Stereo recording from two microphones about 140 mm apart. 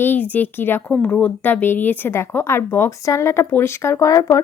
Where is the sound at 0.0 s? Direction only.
15° left (ahead or behind).